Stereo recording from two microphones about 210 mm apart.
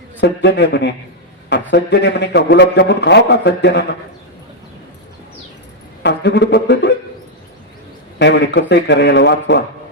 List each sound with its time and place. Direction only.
0.2 s speech: 55° left (ahead or behind)
6.0 s speech: 55° left (ahead or behind)
8.2 s speech: 55° left (ahead or behind)